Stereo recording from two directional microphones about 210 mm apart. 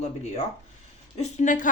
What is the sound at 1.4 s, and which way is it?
Speech, 35° left (ahead or behind).